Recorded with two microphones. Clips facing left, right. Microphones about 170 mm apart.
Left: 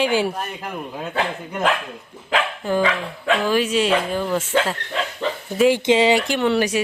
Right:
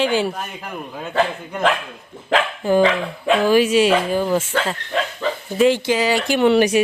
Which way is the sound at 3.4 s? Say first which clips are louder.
Right 6 dB; 10° right (ahead or behind).